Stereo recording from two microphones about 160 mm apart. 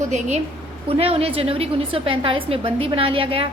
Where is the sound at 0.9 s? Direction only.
35° right (ahead or behind).